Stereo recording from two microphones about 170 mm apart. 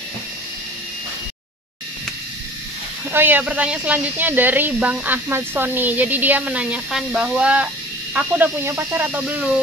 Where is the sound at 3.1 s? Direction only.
10° right (ahead or behind).